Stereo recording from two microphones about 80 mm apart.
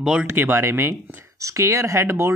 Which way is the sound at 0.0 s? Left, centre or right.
Centre.